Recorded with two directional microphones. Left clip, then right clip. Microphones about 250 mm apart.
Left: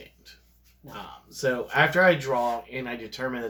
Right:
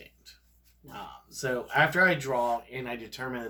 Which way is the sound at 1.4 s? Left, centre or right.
Right.